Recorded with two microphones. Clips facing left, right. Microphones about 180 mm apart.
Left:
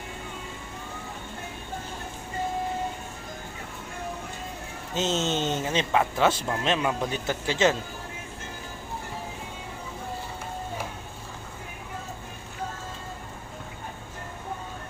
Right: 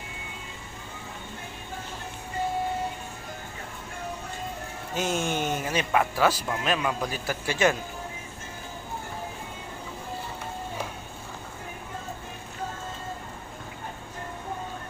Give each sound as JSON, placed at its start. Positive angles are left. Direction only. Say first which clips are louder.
{"t": 4.9, "sound": "a man's voice", "louder": "left 1 dB", "side_deg": 25}